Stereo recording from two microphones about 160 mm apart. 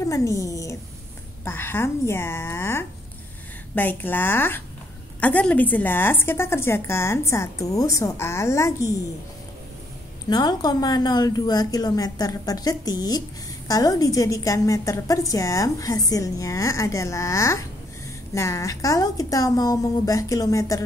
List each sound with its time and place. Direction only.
0.0 s a woman's voice: 20° left (ahead or behind)
10.3 s a woman's voice: 25° left (ahead or behind)